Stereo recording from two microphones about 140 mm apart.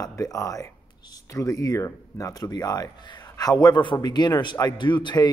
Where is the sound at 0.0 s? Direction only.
25° left (ahead or behind).